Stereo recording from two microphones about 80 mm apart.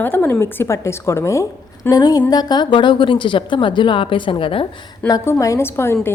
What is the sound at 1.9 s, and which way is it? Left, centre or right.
A woman's voice, left.